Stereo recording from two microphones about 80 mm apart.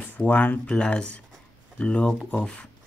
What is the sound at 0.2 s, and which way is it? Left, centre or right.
Speech, centre.